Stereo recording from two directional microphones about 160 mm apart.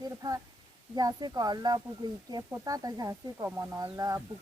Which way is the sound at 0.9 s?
25° right (ahead or behind).